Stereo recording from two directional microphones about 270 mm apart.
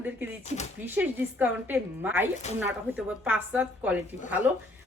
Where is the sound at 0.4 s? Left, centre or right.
Left.